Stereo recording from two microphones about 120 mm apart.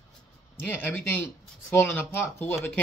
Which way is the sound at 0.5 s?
15° left (ahead or behind).